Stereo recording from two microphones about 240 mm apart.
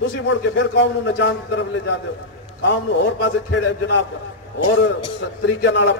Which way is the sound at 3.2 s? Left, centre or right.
Left.